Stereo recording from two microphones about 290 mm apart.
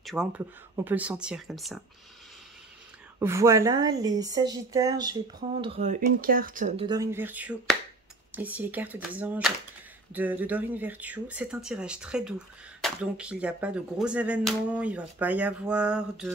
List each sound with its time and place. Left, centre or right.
0.0 s speech: centre
3.2 s speech: centre; by 6.9 s right
6.9 s speech: centre